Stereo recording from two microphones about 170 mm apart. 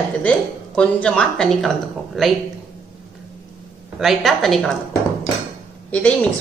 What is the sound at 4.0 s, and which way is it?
Speech, centre (ahead or behind).